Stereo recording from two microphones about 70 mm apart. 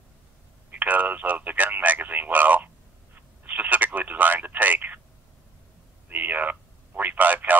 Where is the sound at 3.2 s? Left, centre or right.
Right.